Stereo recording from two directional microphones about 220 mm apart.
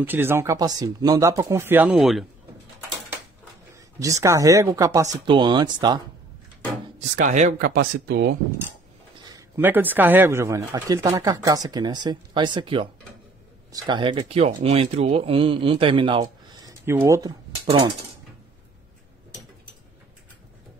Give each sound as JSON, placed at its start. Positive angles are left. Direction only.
{"t": 0.0, "sound": "speech", "side_deg": -10}
{"t": 4.0, "sound": "speech", "side_deg": -15}
{"t": 7.2, "sound": "speech", "side_deg": -35}
{"t": 9.2, "sound": "speech", "side_deg": -15}
{"t": 16.8, "sound": "speech", "side_deg": -10}